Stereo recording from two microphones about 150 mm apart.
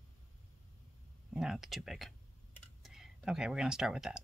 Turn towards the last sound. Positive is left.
turn(degrees=-5)  # may be behind; listen again after turning